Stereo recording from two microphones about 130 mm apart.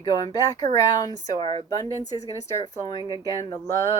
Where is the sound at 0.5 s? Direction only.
30° left (ahead or behind).